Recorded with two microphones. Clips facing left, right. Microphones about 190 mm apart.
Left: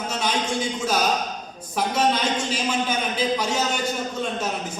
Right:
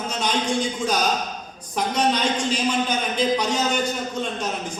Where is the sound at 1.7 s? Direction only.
5° left (ahead or behind).